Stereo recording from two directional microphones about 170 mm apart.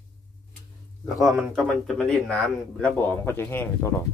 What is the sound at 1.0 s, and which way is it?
Speech, 5° right (ahead or behind).